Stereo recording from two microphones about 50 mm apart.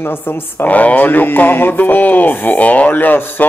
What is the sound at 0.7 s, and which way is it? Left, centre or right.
Speech, left.